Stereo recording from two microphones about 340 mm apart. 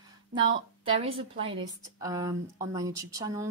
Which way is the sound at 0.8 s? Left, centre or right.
Centre.